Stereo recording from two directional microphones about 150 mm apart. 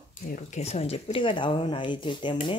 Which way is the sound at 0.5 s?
45° left (ahead or behind).